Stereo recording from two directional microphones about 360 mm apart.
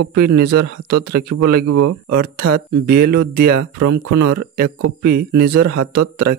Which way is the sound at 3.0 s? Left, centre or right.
Right.